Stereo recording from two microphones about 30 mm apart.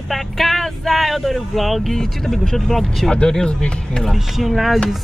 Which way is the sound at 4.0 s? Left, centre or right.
Centre.